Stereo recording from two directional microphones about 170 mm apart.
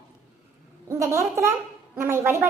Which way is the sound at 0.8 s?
15° right (ahead or behind).